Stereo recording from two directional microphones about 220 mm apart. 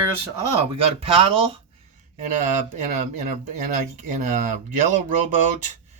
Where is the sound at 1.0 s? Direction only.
25° right (ahead or behind).